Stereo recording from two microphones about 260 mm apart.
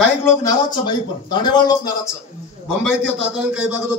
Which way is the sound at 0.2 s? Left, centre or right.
Centre.